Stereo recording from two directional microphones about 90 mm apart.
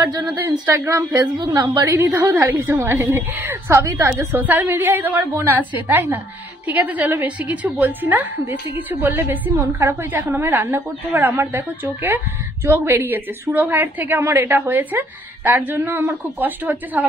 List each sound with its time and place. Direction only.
0.5 s a woman's voice: 35° right (ahead or behind)
4.4 s a woman's voice: 20° right (ahead or behind)